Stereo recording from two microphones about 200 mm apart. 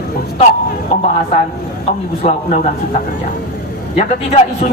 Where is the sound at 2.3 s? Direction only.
35° left (ahead or behind).